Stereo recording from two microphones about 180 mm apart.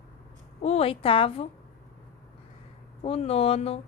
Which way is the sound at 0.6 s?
35° left (ahead or behind).